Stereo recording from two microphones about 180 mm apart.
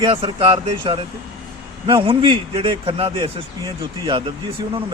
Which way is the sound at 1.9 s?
30° right (ahead or behind).